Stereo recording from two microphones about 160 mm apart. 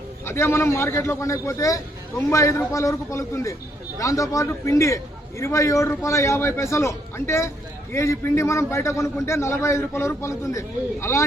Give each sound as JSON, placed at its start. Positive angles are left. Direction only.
{"t": 0.3, "sound": "a man's voice", "side_deg": 15}